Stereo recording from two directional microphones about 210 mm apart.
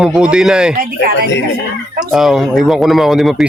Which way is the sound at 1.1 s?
55° left (ahead or behind).